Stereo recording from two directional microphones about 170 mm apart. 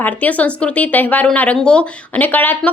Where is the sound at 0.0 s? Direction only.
10° left (ahead or behind).